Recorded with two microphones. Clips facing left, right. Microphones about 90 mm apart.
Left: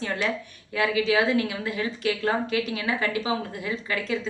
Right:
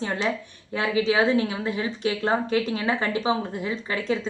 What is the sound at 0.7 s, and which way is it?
A woman's voice, 25° right (ahead or behind).